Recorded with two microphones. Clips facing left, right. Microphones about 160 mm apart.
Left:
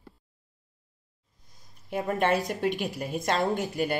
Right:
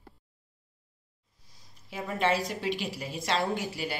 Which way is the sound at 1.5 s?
50° left (ahead or behind).